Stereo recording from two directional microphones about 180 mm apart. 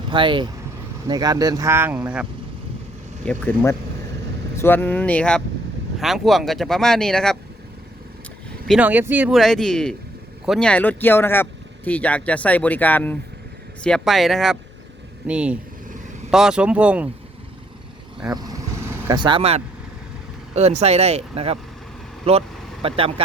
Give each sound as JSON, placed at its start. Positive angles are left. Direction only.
{"t": 0.1, "sound": "speech", "side_deg": -25}
{"t": 3.2, "sound": "speech", "side_deg": 10}
{"t": 8.6, "sound": "speech", "side_deg": -5}
{"t": 18.3, "sound": "speech", "side_deg": -20}